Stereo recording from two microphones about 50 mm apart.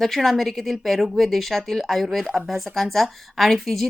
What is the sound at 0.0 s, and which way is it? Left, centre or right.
Speech, centre.